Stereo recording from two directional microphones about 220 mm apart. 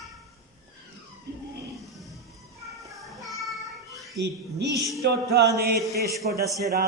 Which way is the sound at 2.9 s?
Centre (ahead or behind).